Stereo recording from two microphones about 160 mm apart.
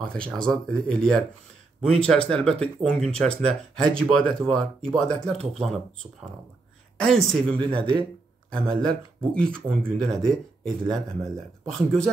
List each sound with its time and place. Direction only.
0.1 s speech: 5° left (ahead or behind)
7.0 s speech: 5° left (ahead or behind)